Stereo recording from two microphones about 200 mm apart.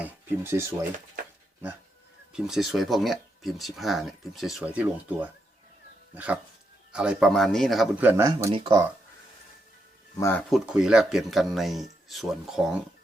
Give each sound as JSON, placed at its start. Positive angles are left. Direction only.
{"t": 0.0, "sound": "a sound", "side_deg": -10}
{"t": 2.3, "sound": "speech", "side_deg": 0}
{"t": 10.2, "sound": "speech", "side_deg": 15}
{"t": 10.5, "sound": "speech", "side_deg": -5}